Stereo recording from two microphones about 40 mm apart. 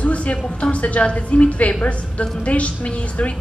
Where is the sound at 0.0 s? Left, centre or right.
Left.